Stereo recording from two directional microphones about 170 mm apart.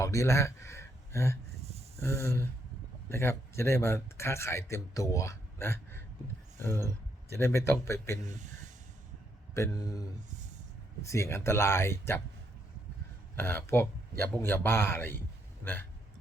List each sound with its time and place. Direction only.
0.0 s speech: 20° left (ahead or behind)
8.3 s speech: 45° right (ahead or behind)
9.6 s speech: 20° left (ahead or behind)
13.3 s speech: 15° left (ahead or behind)